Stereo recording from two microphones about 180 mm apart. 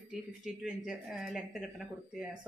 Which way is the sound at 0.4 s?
5° right (ahead or behind).